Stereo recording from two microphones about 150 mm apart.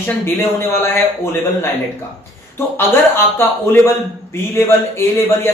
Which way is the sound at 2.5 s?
15° left (ahead or behind).